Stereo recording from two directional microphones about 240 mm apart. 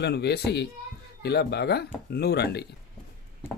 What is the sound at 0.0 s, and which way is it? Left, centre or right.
Speech, left.